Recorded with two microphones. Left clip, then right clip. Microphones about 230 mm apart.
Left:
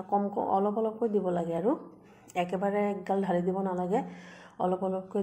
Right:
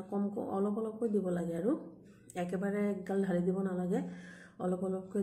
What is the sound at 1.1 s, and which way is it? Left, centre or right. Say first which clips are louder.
Speech: left 5 dB; left.